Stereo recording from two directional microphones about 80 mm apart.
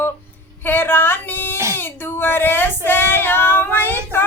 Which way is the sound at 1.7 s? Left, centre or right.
Left.